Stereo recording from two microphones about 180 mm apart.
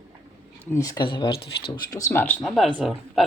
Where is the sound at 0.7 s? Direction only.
20° left (ahead or behind).